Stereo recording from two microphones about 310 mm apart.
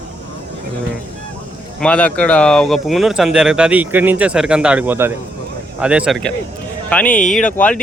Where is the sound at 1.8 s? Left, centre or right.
Centre.